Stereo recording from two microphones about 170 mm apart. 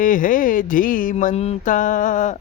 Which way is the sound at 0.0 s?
50° left (ahead or behind).